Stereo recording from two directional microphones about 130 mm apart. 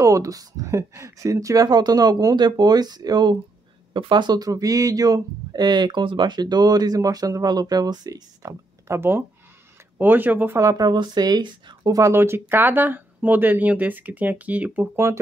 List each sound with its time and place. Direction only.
0.0 s speech: 25° right (ahead or behind)